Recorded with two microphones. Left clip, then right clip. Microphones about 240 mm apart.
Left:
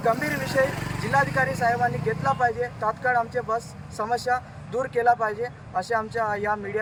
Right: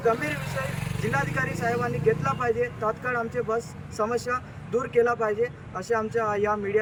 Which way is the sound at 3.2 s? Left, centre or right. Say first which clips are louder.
Left 2 dB; centre.